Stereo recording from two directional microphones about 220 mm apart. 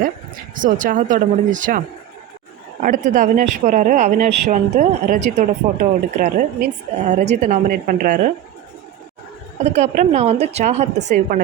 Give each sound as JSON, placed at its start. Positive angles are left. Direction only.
{"t": 0.5, "sound": "speech", "side_deg": -35}
{"t": 2.8, "sound": "speech", "side_deg": -40}
{"t": 9.6, "sound": "speech", "side_deg": -30}